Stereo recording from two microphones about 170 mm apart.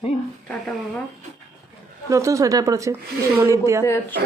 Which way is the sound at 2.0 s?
20° right (ahead or behind).